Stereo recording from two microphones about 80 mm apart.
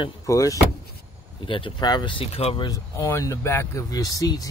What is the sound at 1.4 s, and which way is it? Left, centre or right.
Speech, left.